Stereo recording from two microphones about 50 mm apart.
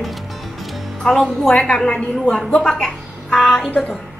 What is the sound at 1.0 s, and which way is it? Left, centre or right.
Speech, centre.